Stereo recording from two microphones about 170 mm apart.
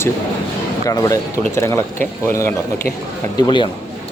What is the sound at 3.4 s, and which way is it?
Speech, 25° left (ahead or behind).